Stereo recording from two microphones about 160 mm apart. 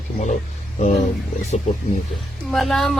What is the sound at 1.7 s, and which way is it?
Speech, 55° left (ahead or behind).